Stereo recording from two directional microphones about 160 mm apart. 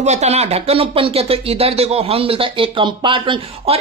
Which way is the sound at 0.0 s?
45° right (ahead or behind).